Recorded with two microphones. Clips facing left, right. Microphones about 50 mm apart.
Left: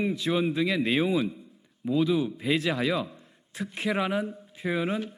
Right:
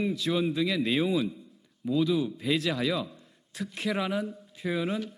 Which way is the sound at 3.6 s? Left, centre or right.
Centre.